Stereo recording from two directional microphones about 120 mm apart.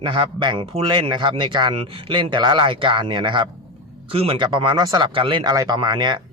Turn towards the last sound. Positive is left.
turn(degrees=-35)  # may be behind; listen again after turning